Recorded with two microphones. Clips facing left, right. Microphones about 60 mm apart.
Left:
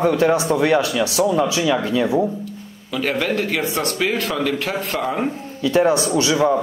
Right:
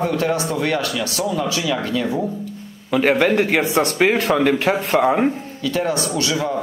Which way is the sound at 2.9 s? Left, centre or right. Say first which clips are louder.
Right 5 dB; right.